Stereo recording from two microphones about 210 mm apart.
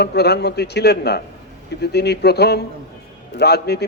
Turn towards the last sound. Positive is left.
turn(degrees=50)  # may be behind; listen again after turning